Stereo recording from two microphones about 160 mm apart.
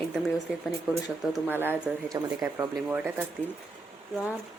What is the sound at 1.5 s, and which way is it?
Speech, 15° right (ahead or behind).